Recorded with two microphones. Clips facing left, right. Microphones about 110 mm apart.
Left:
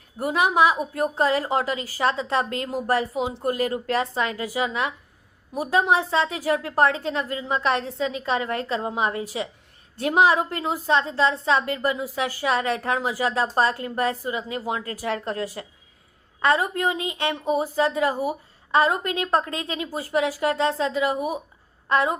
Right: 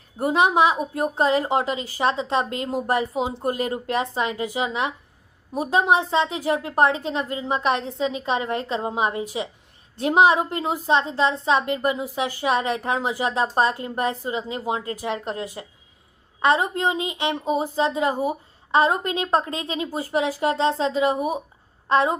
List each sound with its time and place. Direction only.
0.2 s a woman's voice: 25° right (ahead or behind)